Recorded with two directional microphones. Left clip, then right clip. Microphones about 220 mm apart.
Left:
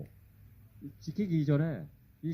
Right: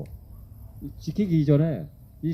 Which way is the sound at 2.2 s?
10° left (ahead or behind).